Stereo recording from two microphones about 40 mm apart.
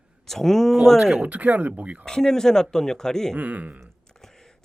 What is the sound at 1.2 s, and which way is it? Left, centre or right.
Speech, right.